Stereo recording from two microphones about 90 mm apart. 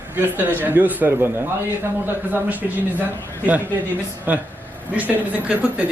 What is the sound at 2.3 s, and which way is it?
Speech, 20° right (ahead or behind).